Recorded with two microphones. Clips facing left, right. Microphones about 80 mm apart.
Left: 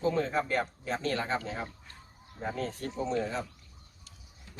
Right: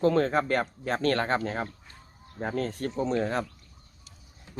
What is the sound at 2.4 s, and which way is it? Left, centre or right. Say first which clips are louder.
Speech: right 4 dB; right.